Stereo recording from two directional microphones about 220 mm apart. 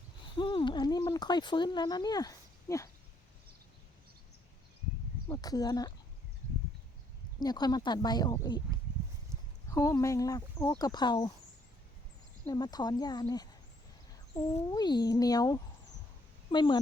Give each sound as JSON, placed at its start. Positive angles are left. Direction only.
{"t": 0.3, "sound": "speech", "side_deg": 20}
{"t": 5.3, "sound": "speech", "side_deg": 15}
{"t": 7.3, "sound": "speech", "side_deg": 20}
{"t": 9.6, "sound": "speech", "side_deg": 15}
{"t": 12.5, "sound": "speech", "side_deg": 15}